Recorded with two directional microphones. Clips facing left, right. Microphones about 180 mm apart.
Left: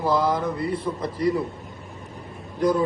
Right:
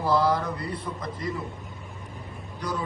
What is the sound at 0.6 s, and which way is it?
Speech, 30° left (ahead or behind).